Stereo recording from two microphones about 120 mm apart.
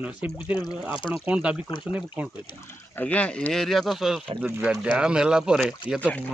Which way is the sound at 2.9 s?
10° left (ahead or behind).